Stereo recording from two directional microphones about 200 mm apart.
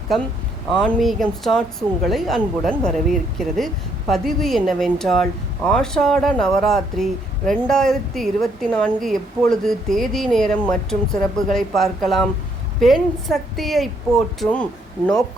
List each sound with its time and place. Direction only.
0.8 s speech: centre (ahead or behind)